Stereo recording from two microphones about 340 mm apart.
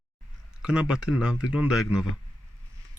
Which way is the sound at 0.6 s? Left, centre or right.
Centre.